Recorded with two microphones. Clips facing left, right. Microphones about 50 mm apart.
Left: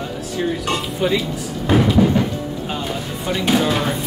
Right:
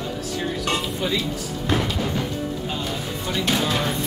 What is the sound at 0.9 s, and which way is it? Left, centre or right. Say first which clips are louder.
Speech: left 5 dB; centre.